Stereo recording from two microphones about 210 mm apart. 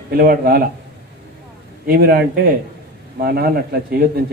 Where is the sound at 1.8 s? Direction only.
45° right (ahead or behind).